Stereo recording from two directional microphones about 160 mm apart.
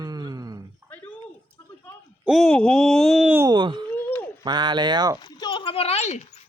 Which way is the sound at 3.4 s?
30° right (ahead or behind).